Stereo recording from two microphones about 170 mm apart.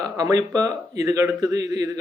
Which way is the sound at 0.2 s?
20° right (ahead or behind).